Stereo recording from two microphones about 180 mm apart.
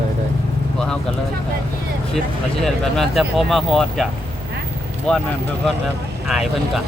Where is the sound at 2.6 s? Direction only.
Centre (ahead or behind).